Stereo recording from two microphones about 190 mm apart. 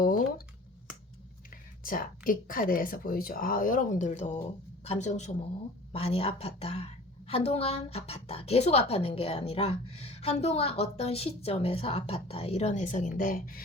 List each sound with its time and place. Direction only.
0.0 s a woman's voice: 45° left (ahead or behind)
1.8 s a woman's voice: 45° left (ahead or behind)